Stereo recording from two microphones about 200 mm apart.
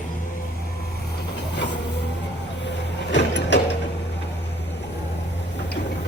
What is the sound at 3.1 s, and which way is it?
Mechanisms, 60° left (ahead or behind).